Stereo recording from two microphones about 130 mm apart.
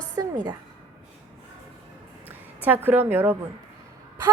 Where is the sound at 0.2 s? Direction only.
30° right (ahead or behind).